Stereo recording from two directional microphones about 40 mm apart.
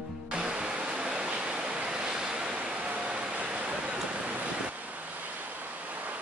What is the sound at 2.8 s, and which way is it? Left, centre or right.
Vehicle, right.